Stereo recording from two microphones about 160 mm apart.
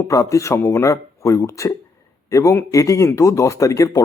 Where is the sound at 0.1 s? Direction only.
20° left (ahead or behind).